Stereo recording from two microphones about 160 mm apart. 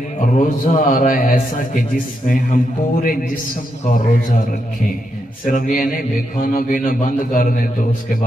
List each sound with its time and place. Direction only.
0.2 s a man's voice: 50° left (ahead or behind)
5.4 s a man's voice: 55° left (ahead or behind)